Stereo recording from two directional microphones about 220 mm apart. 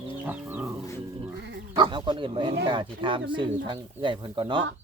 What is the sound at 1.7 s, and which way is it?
Speech, 20° right (ahead or behind).